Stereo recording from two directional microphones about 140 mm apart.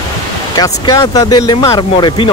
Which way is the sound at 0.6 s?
25° left (ahead or behind).